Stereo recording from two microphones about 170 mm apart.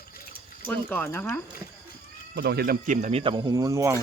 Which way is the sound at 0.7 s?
10° left (ahead or behind).